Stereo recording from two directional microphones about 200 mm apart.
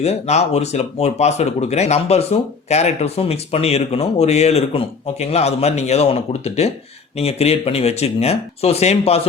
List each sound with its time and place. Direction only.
0.0 s speech: 35° left (ahead or behind)